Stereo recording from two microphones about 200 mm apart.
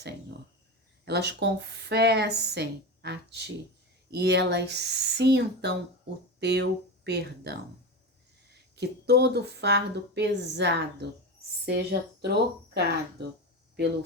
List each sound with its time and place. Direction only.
1.0 s speech: 55° right (ahead or behind)
8.7 s speech: 55° right (ahead or behind)